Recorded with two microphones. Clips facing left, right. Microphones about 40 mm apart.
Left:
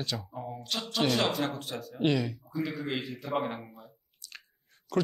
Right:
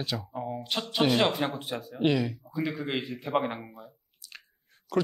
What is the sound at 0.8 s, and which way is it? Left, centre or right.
Speech, centre.